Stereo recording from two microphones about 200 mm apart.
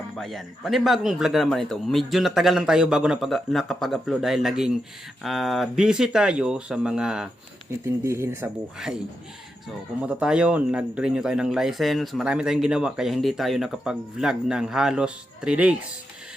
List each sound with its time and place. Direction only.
0.2 s speech: centre (ahead or behind)
7.9 s speech: 15° right (ahead or behind)
10.0 s speech: 5° right (ahead or behind)